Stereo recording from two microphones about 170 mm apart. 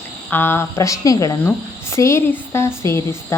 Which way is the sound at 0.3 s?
15° left (ahead or behind).